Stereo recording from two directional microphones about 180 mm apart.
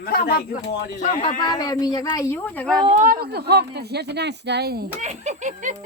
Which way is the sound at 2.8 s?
40° right (ahead or behind).